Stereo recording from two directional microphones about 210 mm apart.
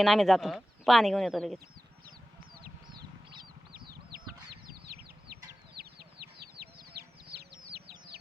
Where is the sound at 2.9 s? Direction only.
20° right (ahead or behind).